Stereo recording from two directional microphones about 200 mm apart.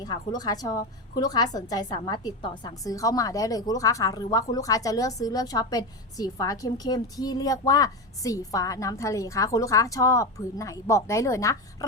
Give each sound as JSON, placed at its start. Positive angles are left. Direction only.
{"t": 0.0, "sound": "a woman's voice", "side_deg": 20}